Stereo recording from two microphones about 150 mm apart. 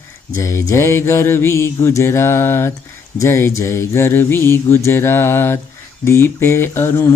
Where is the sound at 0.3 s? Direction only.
20° left (ahead or behind).